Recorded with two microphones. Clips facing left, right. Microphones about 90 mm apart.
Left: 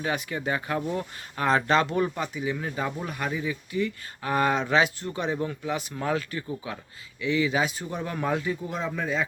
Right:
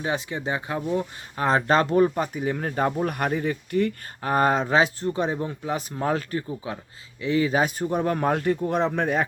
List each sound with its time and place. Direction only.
0.0 s speech: 25° right (ahead or behind); by 3.9 s 55° right (ahead or behind)
4.2 s speech: 35° right (ahead or behind); by 9.2 s 60° right (ahead or behind)